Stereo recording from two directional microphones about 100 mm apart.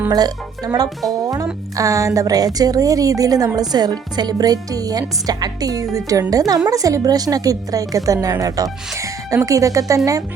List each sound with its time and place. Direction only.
0.1 s a woman's voice: 40° right (ahead or behind)